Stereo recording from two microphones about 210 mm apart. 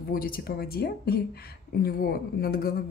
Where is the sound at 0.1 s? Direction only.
45° left (ahead or behind).